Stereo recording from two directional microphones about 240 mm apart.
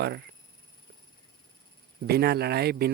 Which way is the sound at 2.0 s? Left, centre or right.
Right.